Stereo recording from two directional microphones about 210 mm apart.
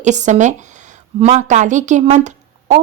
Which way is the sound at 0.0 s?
35° right (ahead or behind).